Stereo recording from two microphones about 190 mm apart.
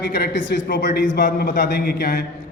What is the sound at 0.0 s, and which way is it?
Speech, 60° left (ahead or behind).